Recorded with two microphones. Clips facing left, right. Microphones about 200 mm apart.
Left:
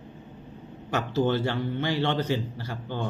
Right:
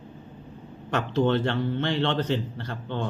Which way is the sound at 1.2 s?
5° left (ahead or behind).